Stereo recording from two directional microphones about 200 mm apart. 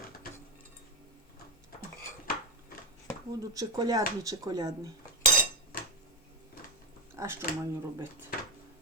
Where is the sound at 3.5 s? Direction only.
20° right (ahead or behind).